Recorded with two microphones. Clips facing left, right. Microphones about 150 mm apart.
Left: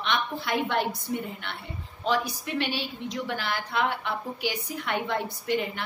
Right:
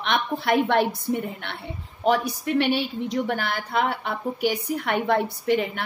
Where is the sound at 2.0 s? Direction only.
55° right (ahead or behind).